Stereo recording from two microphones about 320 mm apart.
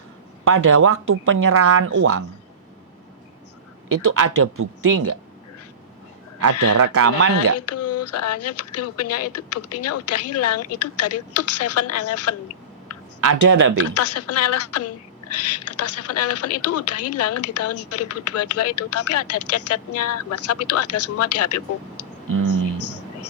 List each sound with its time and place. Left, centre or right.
0.7 s speech: right
3.8 s speech: right
4.8 s speech: right
6.4 s speech: right
7.5 s speech: left
13.2 s speech: right
13.7 s speech: left